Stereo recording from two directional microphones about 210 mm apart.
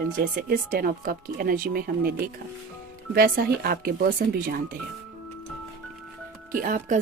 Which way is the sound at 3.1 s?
45° right (ahead or behind).